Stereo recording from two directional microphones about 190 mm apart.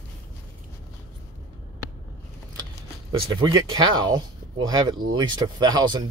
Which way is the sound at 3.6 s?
20° right (ahead or behind).